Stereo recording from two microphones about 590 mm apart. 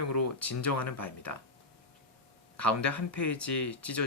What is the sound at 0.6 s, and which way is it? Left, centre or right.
Speech, left.